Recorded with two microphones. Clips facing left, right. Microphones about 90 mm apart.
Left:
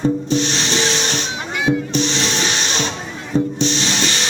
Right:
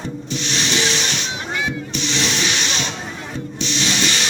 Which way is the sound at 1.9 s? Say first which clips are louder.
Left 3 dB; 35° left (ahead or behind).